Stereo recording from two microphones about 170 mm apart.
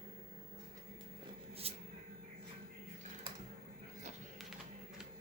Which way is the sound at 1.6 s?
35° right (ahead or behind).